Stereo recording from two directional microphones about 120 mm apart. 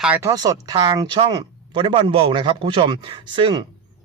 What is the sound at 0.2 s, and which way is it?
A man's voice, 30° right (ahead or behind).